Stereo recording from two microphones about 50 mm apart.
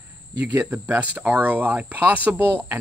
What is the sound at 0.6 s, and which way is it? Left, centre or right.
Speech, right.